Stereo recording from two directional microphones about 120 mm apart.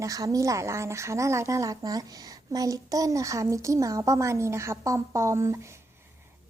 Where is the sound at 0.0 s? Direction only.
30° right (ahead or behind).